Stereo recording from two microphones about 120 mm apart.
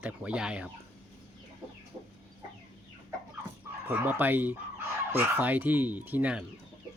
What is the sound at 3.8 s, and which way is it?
Speech, 15° right (ahead or behind).